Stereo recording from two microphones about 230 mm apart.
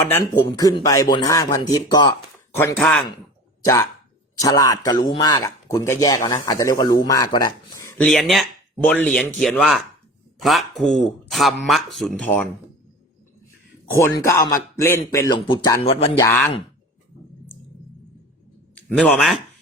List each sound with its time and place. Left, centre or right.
0.3 s a man's voice: centre
2.7 s speech: centre
4.4 s a man's voice: centre
8.0 s speech: centre
13.9 s a man's voice: centre
16.1 s a man's voice: centre
18.7 s speech: centre